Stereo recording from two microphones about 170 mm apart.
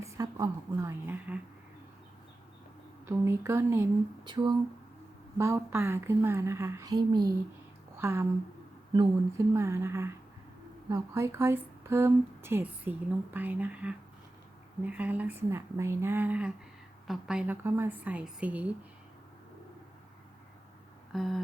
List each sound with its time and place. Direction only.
0.0 s a woman's voice: 20° right (ahead or behind)
3.1 s speech: 15° right (ahead or behind)
4.2 s humming: 25° right (ahead or behind)
5.4 s speech: 15° right (ahead or behind)
21.1 s a sound: centre (ahead or behind)